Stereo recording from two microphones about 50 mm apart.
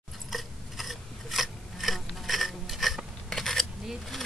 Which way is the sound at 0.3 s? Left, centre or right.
Centre.